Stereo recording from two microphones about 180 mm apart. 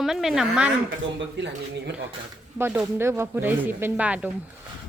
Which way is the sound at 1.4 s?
75° right (ahead or behind).